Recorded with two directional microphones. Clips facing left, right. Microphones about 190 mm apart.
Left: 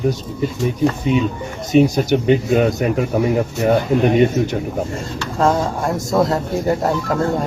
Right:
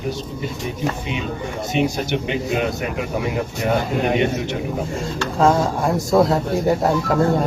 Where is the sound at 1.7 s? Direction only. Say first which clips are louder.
Left 8 dB; 40° left (ahead or behind).